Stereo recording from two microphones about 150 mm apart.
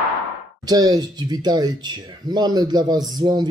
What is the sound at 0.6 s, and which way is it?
Speech, 25° right (ahead or behind).